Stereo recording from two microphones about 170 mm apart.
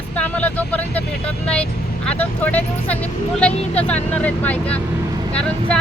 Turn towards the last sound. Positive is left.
turn(degrees=5)  # may be behind; listen again after turning